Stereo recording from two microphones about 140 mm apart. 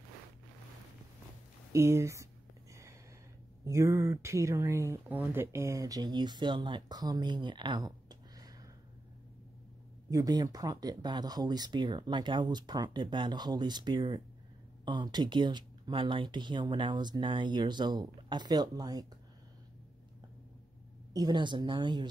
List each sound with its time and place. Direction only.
1.7 s speech: 20° right (ahead or behind)
3.6 s speech: 20° right (ahead or behind)
10.0 s speech: 25° right (ahead or behind)
21.1 s speech: 30° right (ahead or behind)